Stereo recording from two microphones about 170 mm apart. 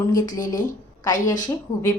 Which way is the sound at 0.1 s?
20° left (ahead or behind).